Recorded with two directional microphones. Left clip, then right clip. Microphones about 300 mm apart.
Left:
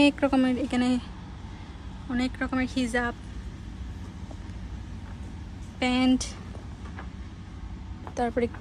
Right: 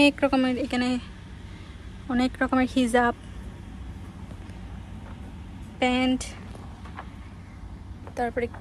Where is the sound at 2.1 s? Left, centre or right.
Centre.